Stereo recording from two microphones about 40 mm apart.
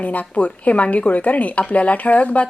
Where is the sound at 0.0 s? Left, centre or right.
Left.